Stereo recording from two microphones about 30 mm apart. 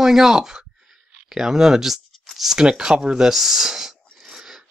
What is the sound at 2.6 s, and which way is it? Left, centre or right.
Speech, right.